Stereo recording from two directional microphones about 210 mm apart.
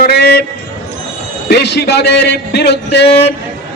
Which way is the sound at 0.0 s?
50° left (ahead or behind).